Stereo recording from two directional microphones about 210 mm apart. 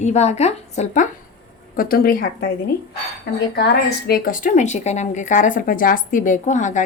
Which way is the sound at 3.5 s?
50° left (ahead or behind).